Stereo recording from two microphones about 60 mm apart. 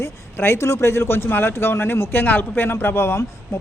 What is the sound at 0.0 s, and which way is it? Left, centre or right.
A man's voice, left.